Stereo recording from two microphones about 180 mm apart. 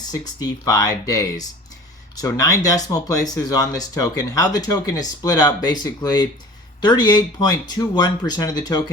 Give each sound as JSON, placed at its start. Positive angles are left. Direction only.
{"t": 0.1, "sound": "speech", "side_deg": 20}